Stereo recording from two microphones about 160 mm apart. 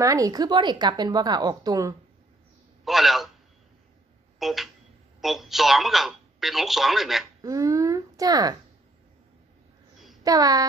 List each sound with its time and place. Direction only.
0.0 s a woman's voice: 20° right (ahead or behind)
2.8 s a man's voice: centre (ahead or behind)
4.4 s speech: centre (ahead or behind)
7.4 s a woman's voice: 20° right (ahead or behind)
10.2 s a woman's voice: 25° right (ahead or behind)